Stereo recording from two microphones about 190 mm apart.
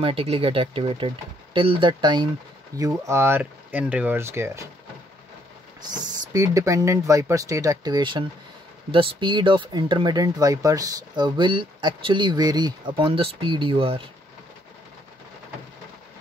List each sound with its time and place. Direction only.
0.0 s speech: 30° right (ahead or behind); by 4.6 s 15° right (ahead or behind)
6.3 s speech: 15° right (ahead or behind)